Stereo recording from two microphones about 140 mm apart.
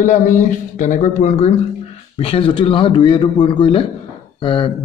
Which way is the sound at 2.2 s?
40° left (ahead or behind).